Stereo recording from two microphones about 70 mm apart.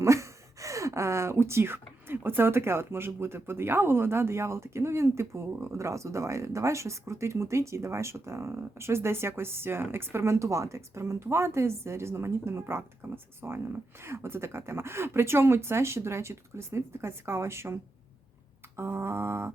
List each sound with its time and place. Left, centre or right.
0.0 s speech: right
18.8 s speech: right